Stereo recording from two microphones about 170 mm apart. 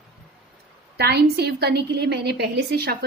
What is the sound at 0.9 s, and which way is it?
A woman's voice, 75° right (ahead or behind).